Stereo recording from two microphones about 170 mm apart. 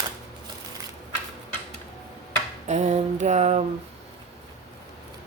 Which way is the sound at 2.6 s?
45° right (ahead or behind).